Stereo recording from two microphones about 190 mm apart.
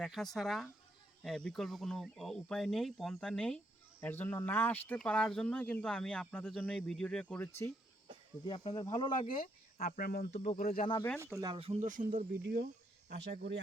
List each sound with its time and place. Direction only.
0.0 s speech: centre (ahead or behind)
8.4 s speech: 25° left (ahead or behind)
9.3 s speech: 50° left (ahead or behind)
10.3 s speech: 35° left (ahead or behind)
10.6 s speech: 50° left (ahead or behind)
11.3 s speech: 25° right (ahead or behind); by 12.6 s 45° right (ahead or behind)
13.1 s speech: 60° right (ahead or behind)